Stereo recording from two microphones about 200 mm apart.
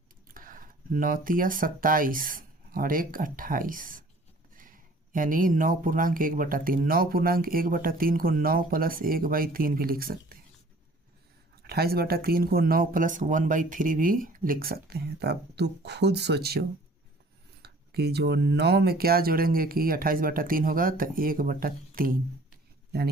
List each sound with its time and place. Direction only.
0.3 s speech: 45° right (ahead or behind)
11.6 s speech: 50° right (ahead or behind)